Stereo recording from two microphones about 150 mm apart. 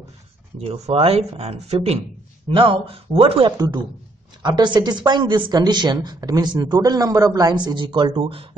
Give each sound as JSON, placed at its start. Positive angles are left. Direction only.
{"t": 0.6, "sound": "a man's voice", "side_deg": -40}